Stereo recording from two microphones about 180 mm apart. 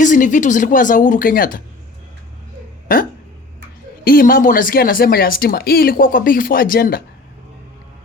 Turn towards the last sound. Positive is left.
turn(degrees=55)  # may be behind; listen again after turning